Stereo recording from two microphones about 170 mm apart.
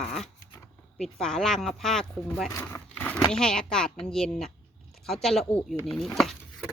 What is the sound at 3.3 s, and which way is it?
Speech, 5° left (ahead or behind).